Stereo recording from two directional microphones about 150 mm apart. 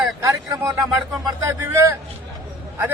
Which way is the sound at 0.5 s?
20° right (ahead or behind).